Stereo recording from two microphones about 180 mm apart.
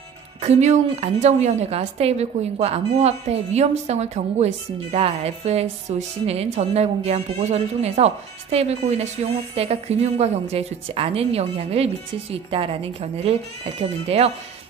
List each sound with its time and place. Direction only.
0.4 s speech: 40° right (ahead or behind)